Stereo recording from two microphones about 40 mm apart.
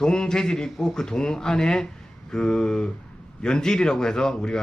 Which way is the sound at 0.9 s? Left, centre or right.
Centre.